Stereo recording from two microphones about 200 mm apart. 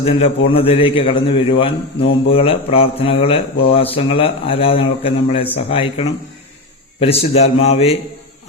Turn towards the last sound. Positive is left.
turn(degrees=30)  # may be behind; listen again after turning